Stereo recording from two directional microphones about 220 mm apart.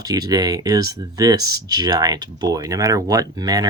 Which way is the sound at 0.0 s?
15° right (ahead or behind).